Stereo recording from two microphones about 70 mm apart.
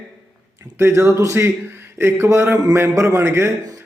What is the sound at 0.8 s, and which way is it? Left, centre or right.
A man's voice, right.